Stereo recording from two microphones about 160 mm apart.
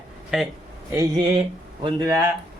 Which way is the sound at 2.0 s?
15° right (ahead or behind).